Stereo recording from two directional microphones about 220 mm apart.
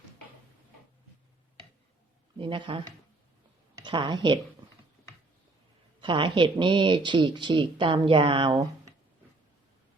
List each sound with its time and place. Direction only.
2.4 s speech: 20° right (ahead or behind)
3.8 s speech: 20° right (ahead or behind)
6.0 s speech: 20° right (ahead or behind)